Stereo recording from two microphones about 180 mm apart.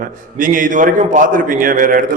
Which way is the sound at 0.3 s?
50° right (ahead or behind).